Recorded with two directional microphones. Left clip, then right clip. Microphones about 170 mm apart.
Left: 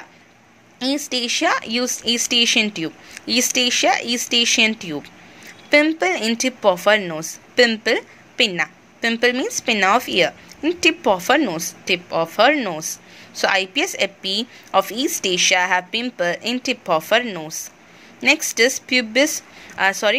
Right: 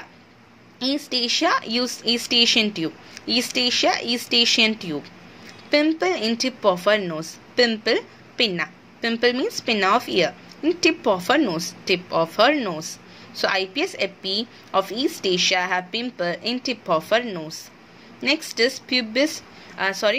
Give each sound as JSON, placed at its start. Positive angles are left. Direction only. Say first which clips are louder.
{"t": 0.7, "sound": "a woman's voice", "louder": "left 2 dB", "side_deg": 15}